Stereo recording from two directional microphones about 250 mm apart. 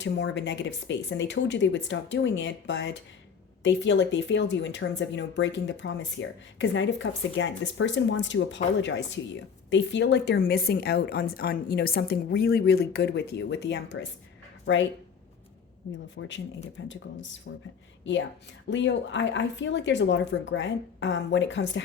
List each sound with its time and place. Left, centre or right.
0.0 s speech: left
16.1 s speech: left
18.7 s speech: left